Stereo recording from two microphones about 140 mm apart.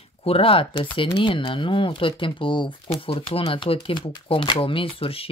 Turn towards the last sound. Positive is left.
turn(degrees=40)  # may be behind; listen again after turning